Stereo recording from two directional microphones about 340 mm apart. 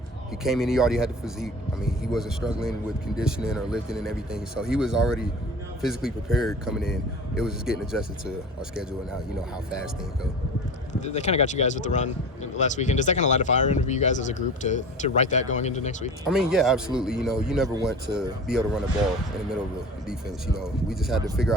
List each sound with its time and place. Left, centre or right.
0.4 s speech: centre
10.9 s speech: centre
16.3 s speech: centre
20.6 s speech: centre